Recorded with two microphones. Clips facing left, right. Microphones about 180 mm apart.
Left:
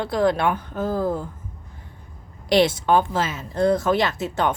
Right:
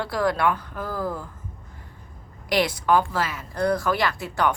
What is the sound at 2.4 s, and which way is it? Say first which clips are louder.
A woman's voice: left 4 dB; 25° left (ahead or behind).